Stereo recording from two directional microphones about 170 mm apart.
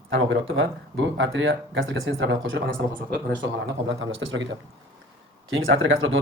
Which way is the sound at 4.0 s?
90° right.